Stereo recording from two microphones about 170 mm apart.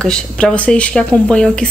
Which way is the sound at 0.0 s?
5° left (ahead or behind).